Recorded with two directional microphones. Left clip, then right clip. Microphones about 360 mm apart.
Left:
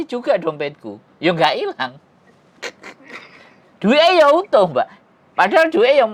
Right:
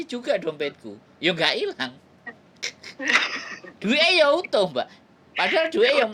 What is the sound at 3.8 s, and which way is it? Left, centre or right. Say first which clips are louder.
A woman's voice: left 7 dB; left.